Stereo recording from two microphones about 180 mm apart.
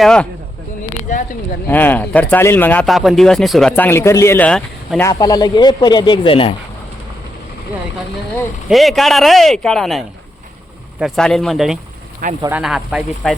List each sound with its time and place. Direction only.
0.0 s speech: 5° left (ahead or behind)
1.6 s speech: 10° left (ahead or behind)
5.0 s speech: 20° left (ahead or behind)
8.7 s speech: centre (ahead or behind)
11.0 s speech: centre (ahead or behind)